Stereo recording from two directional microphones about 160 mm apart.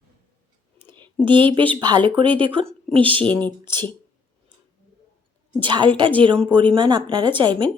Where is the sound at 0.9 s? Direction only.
30° right (ahead or behind).